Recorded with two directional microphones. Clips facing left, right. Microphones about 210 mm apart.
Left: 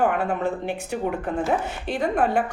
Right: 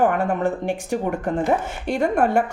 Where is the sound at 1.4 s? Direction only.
15° right (ahead or behind).